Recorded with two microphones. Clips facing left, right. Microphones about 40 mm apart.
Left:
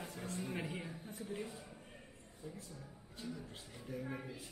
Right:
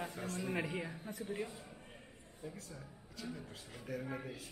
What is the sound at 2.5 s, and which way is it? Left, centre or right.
Speech, right.